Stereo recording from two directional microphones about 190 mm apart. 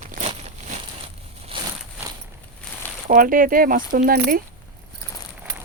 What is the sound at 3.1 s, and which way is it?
Speech, 45° right (ahead or behind).